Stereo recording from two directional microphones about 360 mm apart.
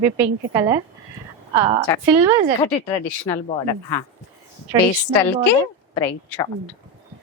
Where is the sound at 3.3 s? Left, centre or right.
Centre.